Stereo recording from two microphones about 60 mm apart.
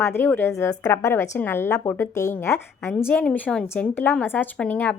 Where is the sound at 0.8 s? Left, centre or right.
Left.